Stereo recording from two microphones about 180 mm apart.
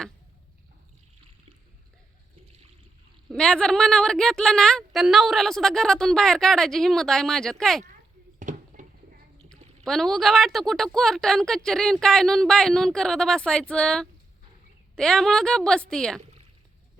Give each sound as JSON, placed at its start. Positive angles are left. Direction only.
{"t": 3.2, "sound": "speech", "side_deg": 5}
{"t": 8.4, "sound": "a sound", "side_deg": -45}
{"t": 9.5, "sound": "speech", "side_deg": 0}